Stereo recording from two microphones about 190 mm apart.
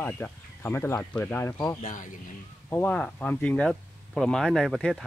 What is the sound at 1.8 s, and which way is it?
Speech, 40° left (ahead or behind).